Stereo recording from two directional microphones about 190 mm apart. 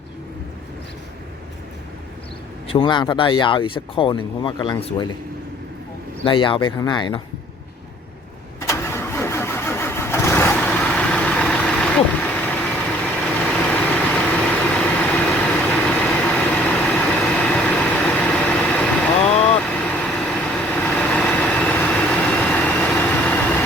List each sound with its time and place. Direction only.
2.6 s speech: 25° left (ahead or behind)
6.2 s speech: 25° left (ahead or behind)
8.6 s engine starting: 15° left (ahead or behind)
19.4 s vehicle: 5° left (ahead or behind)